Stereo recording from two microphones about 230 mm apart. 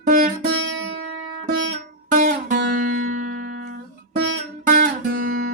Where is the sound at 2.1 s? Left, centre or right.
Right.